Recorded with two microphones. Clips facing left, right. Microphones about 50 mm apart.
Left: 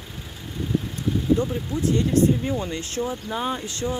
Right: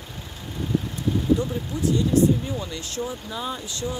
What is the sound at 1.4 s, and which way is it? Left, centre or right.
Speech, left.